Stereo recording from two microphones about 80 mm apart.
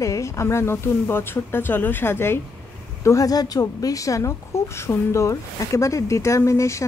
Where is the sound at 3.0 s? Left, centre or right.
Left.